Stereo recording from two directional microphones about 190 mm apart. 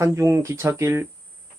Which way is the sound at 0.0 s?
15° right (ahead or behind).